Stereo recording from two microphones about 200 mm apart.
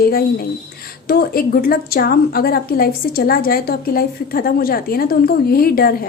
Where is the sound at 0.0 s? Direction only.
50° left (ahead or behind).